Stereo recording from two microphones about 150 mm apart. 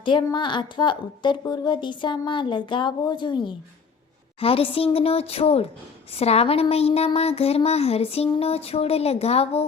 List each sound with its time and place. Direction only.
0.0 s speech: 30° left (ahead or behind)